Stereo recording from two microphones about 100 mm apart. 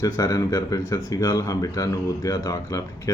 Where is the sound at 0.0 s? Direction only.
35° left (ahead or behind).